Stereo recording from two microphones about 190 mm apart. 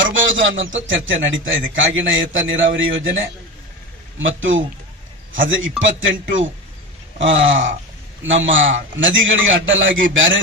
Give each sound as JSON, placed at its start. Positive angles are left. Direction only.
{"t": 0.0, "sound": "a man's voice", "side_deg": -90}
{"t": 4.2, "sound": "a man's voice", "side_deg": -90}